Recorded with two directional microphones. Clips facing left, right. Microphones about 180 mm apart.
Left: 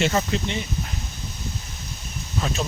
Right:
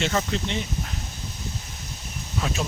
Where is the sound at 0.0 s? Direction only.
5° left (ahead or behind).